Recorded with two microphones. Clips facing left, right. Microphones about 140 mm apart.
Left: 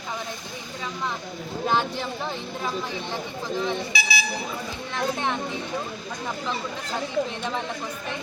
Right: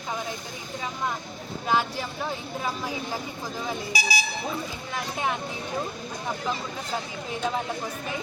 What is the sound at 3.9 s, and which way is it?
Speech, 40° right (ahead or behind).